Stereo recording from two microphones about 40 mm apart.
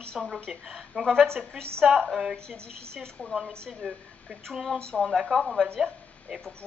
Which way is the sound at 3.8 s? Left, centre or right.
Centre.